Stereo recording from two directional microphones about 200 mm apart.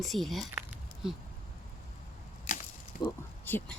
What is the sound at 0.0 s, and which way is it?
Speech, centre (ahead or behind).